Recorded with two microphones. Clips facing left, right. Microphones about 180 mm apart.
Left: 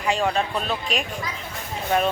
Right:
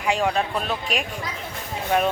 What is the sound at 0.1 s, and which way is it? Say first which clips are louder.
Music: even; 10° right (ahead or behind).